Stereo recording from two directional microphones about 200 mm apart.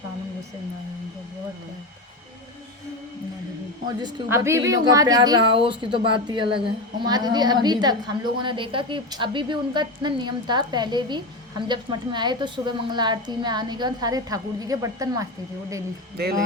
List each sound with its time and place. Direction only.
4.0 s a woman's voice: 15° right (ahead or behind)